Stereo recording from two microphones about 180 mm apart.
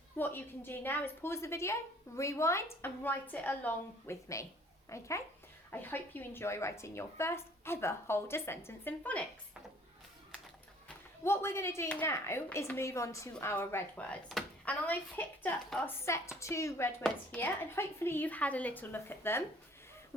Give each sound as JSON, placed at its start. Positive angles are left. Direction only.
{"t": 0.2, "sound": "a woman's voice", "side_deg": 10}
{"t": 10.8, "sound": "a woman's voice", "side_deg": 15}